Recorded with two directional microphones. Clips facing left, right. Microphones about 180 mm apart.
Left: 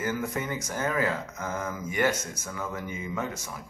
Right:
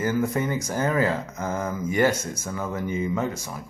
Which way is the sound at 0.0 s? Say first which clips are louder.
Right 6 dB; 35° right (ahead or behind).